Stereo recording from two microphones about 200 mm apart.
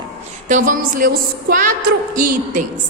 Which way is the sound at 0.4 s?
40° right (ahead or behind).